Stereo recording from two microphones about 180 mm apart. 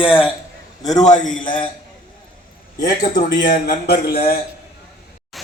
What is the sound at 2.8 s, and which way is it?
A man's voice, 55° left (ahead or behind).